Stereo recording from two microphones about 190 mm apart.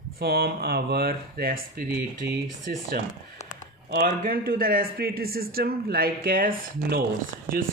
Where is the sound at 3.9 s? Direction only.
55° right (ahead or behind).